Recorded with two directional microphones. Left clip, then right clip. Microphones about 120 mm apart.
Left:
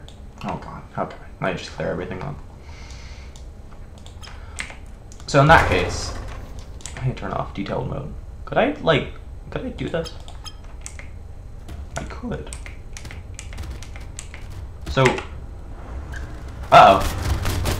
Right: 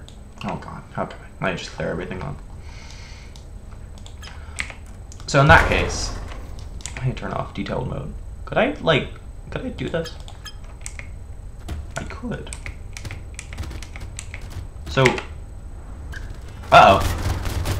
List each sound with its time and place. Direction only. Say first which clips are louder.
0.6 s speech: left 1 dB; 10° right (ahead or behind)
4.6 s computer keyboard: right 3 dB; 20° right (ahead or behind)
5.2 s speech: even; 10° right (ahead or behind)
6.8 s speech: even; 15° right (ahead or behind)
11.9 s typing: left 1 dB; 15° right (ahead or behind)
14.5 s typing: even; 10° right (ahead or behind)
16.1 s a sound: right 3 dB; centre (ahead or behind)